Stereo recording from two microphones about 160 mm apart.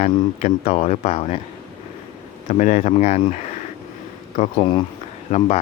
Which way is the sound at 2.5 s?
50° left (ahead or behind).